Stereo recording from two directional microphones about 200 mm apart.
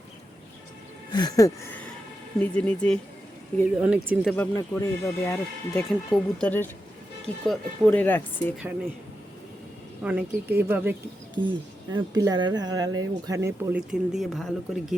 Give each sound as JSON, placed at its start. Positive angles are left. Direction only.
{"t": 1.1, "sound": "speech", "side_deg": 20}
{"t": 2.4, "sound": "speech", "side_deg": 5}
{"t": 3.8, "sound": "a woman's voice", "side_deg": -5}
{"t": 4.4, "sound": "speech", "side_deg": 10}
{"t": 10.0, "sound": "a woman's voice", "side_deg": -5}
{"t": 11.3, "sound": "speech", "side_deg": -25}
{"t": 13.7, "sound": "speech", "side_deg": -5}